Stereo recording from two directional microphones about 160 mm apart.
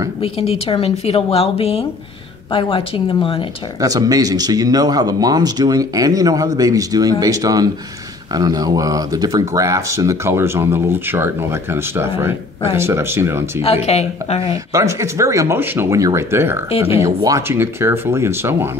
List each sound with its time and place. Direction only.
0.2 s a woman's voice: 40° left (ahead or behind)
3.8 s speech: 25° right (ahead or behind)
13.6 s a woman's voice: 40° left (ahead or behind)
14.5 s speech: 20° right (ahead or behind)